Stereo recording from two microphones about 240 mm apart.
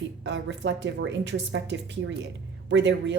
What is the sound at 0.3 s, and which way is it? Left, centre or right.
Speech, right.